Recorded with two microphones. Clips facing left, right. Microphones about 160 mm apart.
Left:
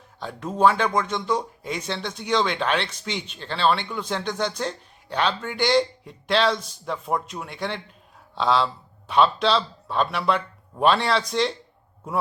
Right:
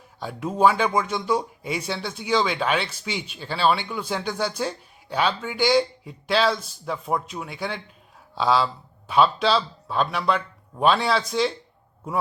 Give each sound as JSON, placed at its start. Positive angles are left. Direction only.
{"t": 0.2, "sound": "speech", "side_deg": -10}